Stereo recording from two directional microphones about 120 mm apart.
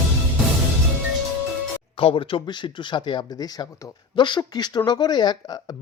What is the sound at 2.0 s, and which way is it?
Speech, 45° left (ahead or behind).